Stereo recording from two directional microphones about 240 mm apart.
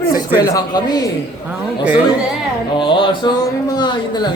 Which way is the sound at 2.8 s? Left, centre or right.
Left.